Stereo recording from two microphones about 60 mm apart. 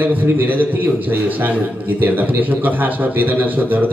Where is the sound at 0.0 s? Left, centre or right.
Right.